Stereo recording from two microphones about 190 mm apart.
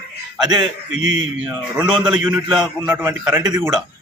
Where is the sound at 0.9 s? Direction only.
90° right.